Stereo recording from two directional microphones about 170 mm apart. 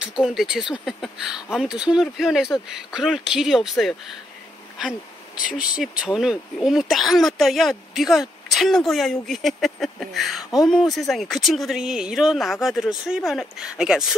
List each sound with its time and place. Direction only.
0.2 s speech: centre (ahead or behind)
5.5 s speech: 5° right (ahead or behind)